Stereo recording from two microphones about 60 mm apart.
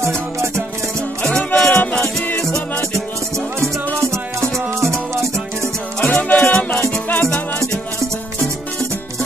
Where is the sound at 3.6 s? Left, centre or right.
Right.